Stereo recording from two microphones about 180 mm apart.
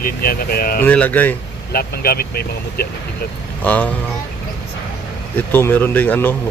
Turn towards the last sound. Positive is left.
turn(degrees=10)  # may be behind; listen again after turning